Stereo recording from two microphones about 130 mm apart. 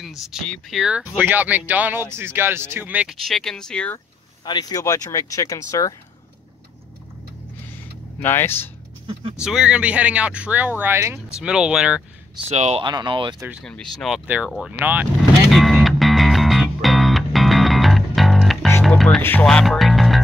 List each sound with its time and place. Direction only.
0.0 s speech: centre (ahead or behind)
3.3 s speech: 5° left (ahead or behind)
4.5 s speech: 30° left (ahead or behind)
8.2 s speech: 15° left (ahead or behind)
9.0 s vehicle: 45° right (ahead or behind)
9.4 s speech: 5° right (ahead or behind)
11.3 s speech: 5° right (ahead or behind)
12.4 s speech: 55° right (ahead or behind)
12.8 s speech: 35° right (ahead or behind)
13.7 s speech: 5° left (ahead or behind)
14.2 s speech: 10° right (ahead or behind)
15.5 s music: centre (ahead or behind)
19.4 s speech: 5° left (ahead or behind)